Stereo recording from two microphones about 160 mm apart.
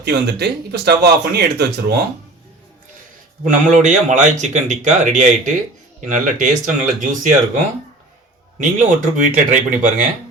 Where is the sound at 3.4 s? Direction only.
50° right (ahead or behind).